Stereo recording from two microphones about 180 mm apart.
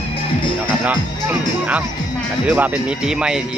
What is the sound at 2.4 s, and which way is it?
Speech, 10° right (ahead or behind).